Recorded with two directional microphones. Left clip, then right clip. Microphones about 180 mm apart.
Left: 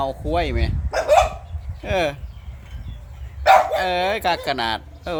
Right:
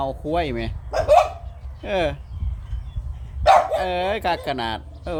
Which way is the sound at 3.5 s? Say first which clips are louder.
Left 1 dB; centre (ahead or behind).